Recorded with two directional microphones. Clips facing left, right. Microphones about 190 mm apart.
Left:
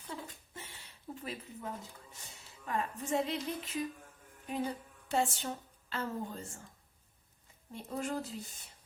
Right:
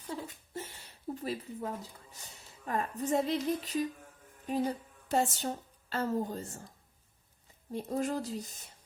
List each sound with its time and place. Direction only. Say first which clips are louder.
0.1 s a sound: right 5 dB; 40° right (ahead or behind)
2.6 s a woman's voice: right 3 dB; 40° right (ahead or behind)
7.7 s a woman's voice: right 5 dB; 40° right (ahead or behind)